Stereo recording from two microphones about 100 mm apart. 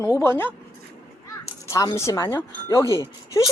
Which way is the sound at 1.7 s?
30° left (ahead or behind).